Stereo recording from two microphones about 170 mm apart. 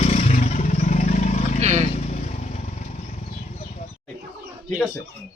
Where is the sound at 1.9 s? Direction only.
40° left (ahead or behind).